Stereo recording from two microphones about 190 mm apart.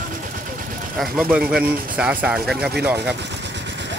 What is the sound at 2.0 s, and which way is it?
Speech, 5° right (ahead or behind).